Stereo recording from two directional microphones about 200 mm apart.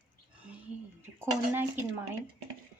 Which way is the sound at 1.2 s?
10° right (ahead or behind).